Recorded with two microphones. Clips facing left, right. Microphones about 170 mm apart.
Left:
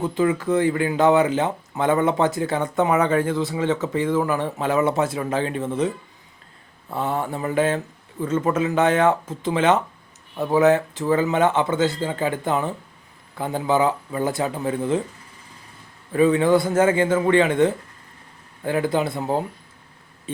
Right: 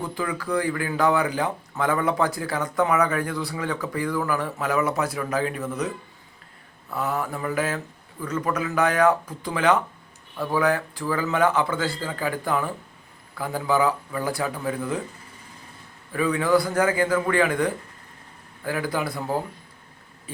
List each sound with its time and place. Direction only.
0.0 s speech: 20° left (ahead or behind)
6.9 s speech: 25° left (ahead or behind)
16.1 s speech: 25° left (ahead or behind)